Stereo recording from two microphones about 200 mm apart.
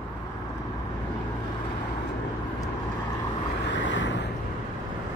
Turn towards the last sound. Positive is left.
turn(degrees=65)  # may be behind; listen again after turning